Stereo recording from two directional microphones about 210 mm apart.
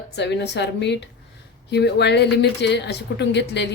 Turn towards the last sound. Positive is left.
turn(degrees=55)  # may be behind; listen again after turning